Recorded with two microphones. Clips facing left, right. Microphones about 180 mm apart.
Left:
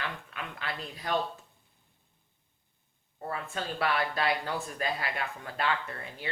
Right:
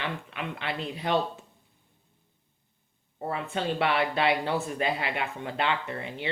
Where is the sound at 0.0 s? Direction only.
25° right (ahead or behind).